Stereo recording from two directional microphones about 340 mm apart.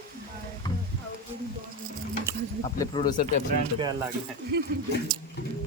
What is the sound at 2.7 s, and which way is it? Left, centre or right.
Speech, centre.